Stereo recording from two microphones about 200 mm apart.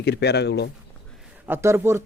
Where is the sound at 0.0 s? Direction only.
55° left (ahead or behind).